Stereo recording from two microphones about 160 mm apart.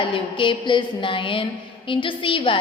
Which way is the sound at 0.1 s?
30° left (ahead or behind).